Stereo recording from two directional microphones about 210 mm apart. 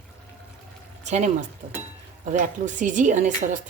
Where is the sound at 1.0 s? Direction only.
35° right (ahead or behind).